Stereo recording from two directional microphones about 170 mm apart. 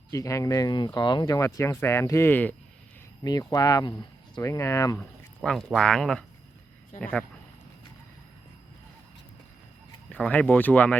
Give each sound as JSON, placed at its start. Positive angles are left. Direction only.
{"t": 0.1, "sound": "speech", "side_deg": 20}
{"t": 3.2, "sound": "speech", "side_deg": 20}
{"t": 4.9, "sound": "a man's voice", "side_deg": 0}
{"t": 10.1, "sound": "speech", "side_deg": 10}